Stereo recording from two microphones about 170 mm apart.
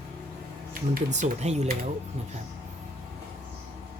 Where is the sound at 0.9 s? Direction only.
45° right (ahead or behind).